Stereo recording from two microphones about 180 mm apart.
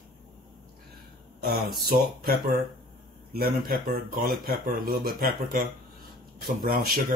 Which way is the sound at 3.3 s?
55° right (ahead or behind).